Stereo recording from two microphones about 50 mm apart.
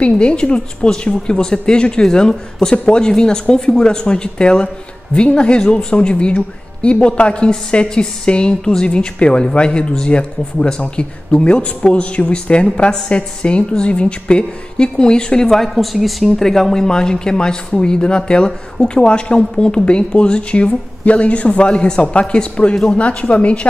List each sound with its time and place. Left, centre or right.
0.0 s a woman's voice: left
2.7 s a woman's voice: left
3.0 s a woman's voice: centre